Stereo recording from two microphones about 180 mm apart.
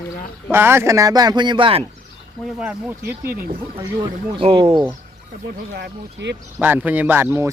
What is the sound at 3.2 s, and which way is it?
Speech, 55° right (ahead or behind).